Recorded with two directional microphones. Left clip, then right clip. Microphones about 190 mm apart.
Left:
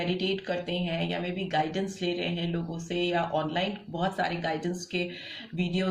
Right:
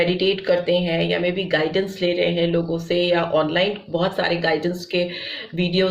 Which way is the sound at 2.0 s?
30° right (ahead or behind).